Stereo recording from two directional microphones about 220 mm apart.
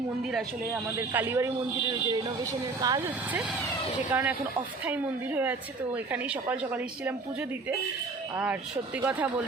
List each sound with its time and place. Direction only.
1.1 s speech: 10° right (ahead or behind)
9.0 s speech: 5° right (ahead or behind)